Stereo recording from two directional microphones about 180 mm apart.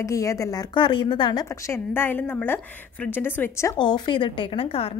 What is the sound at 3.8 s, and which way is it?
A woman's voice, 25° left (ahead or behind).